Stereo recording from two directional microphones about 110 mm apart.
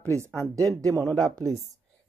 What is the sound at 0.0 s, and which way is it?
Speech, 25° right (ahead or behind).